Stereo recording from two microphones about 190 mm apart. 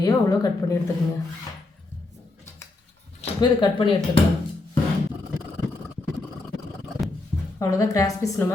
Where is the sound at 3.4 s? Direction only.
25° left (ahead or behind).